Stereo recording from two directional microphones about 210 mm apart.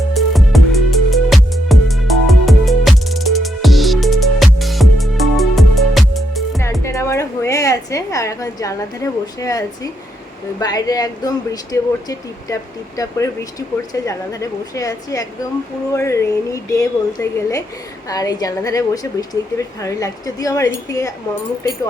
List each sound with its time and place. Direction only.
0.1 s music: centre (ahead or behind)
6.8 s a sound: 15° left (ahead or behind)
10.6 s speech: 15° left (ahead or behind)